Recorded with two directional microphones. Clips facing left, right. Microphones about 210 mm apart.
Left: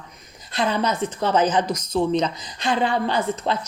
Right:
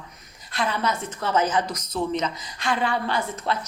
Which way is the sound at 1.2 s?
15° left (ahead or behind).